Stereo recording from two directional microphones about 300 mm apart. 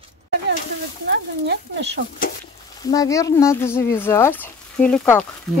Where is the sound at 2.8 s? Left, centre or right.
Centre.